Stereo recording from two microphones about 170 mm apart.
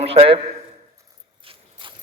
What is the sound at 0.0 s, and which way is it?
Speech, 35° right (ahead or behind).